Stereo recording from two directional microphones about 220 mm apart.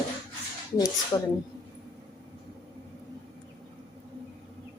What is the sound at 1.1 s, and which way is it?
Speech, 15° left (ahead or behind).